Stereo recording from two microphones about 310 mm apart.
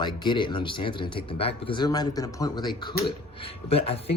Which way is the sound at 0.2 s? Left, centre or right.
Centre.